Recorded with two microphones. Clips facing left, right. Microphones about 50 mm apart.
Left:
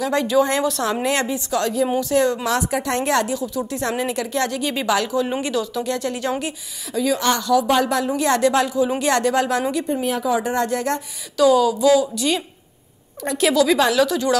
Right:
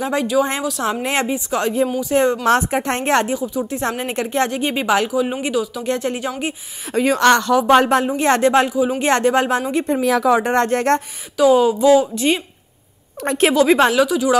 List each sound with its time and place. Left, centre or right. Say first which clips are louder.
0.1 s speech: left 1 dB; centre
2.4 s a woman's voice: right 5 dB; right
3.3 s speech: right 2 dB; right
4.0 s speech: right 2 dB; right
5.1 s speech: right 2 dB; centre
5.9 s speech: right 2 dB; right
6.9 s speech: right 6 dB; right
7.5 s a woman's voice: right 4 dB; right
9.8 s speech: right 5 dB; right
10.3 s speech: right 4 dB; right
11.3 s a woman's voice: right 2 dB; right
13.9 s speech: right 2 dB; centre